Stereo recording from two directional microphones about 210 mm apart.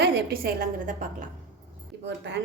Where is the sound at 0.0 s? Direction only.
45° right (ahead or behind).